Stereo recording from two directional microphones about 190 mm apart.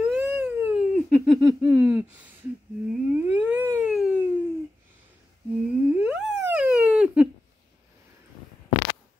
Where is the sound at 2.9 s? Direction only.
5° right (ahead or behind).